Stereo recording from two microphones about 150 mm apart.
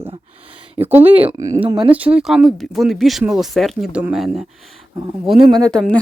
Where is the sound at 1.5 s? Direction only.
35° right (ahead or behind).